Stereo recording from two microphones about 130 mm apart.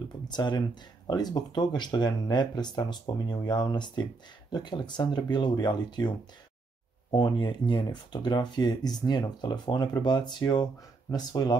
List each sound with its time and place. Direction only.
0.3 s speech: 35° left (ahead or behind)